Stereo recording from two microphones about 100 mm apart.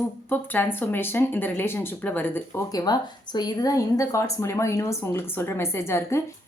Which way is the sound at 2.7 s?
40° left (ahead or behind).